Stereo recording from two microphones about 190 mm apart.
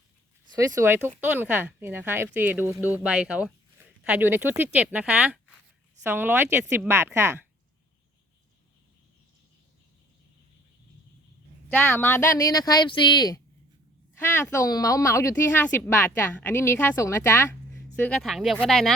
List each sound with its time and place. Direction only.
0.7 s speech: 15° right (ahead or behind)
11.7 s speech: 10° left (ahead or behind)
18.2 s speech: centre (ahead or behind)